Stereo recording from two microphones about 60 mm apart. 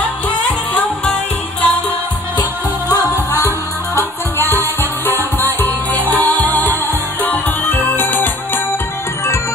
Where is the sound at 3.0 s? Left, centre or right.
Left.